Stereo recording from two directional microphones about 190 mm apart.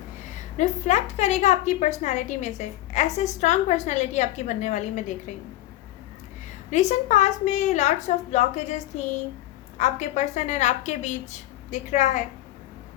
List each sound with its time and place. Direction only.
0.3 s a woman's voice: 40° left (ahead or behind)
6.7 s a woman's voice: 40° left (ahead or behind)